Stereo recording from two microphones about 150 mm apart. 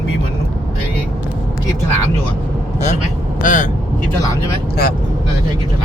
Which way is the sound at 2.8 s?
55° left (ahead or behind).